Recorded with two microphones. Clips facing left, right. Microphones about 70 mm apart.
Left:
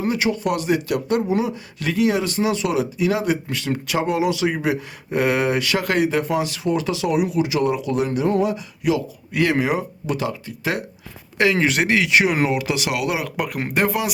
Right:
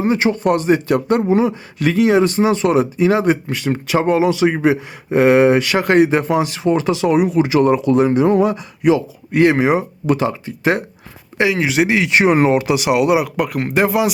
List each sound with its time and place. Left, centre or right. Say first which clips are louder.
0.0 s speech: right 5 dB; right
4.0 s speech: right 6 dB; right
10.2 s speech: right 6 dB; right
11.5 s speech: right 3 dB; centre
12.0 s speech: right 5 dB; right
12.6 s speech: right 8 dB; right
13.3 s speech: right 5 dB; centre